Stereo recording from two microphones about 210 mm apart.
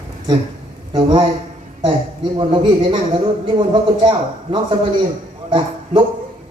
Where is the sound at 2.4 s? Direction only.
20° right (ahead or behind).